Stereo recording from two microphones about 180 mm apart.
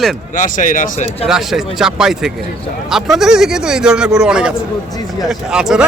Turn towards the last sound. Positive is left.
turn(degrees=-5)  # may be behind; listen again after turning